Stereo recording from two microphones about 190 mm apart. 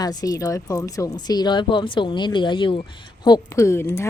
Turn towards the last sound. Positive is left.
turn(degrees=15)  # may be behind; listen again after turning